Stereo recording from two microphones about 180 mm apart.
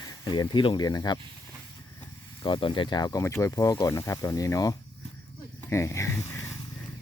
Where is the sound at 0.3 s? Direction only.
25° left (ahead or behind).